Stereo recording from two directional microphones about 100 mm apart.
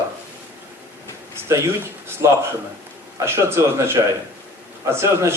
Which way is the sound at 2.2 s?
30° right (ahead or behind).